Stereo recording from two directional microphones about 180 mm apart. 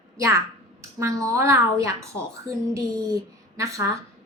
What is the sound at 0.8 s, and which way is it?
A woman's voice, 15° right (ahead or behind).